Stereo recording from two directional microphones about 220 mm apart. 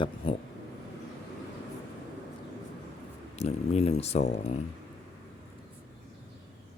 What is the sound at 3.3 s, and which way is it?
Speech, 30° left (ahead or behind).